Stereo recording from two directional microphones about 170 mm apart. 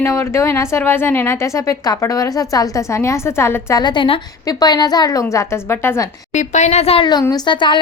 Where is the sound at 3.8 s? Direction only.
30° left (ahead or behind).